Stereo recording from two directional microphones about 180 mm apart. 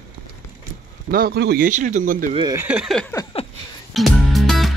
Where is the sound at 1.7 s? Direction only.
45° right (ahead or behind).